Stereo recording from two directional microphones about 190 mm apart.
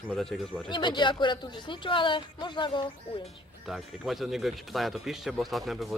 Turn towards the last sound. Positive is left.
turn(degrees=0)  # may be behind; listen again after turning